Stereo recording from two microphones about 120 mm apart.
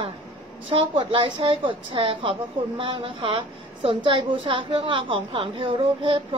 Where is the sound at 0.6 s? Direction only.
45° right (ahead or behind).